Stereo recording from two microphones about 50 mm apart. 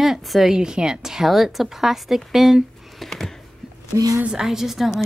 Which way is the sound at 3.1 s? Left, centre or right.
Centre.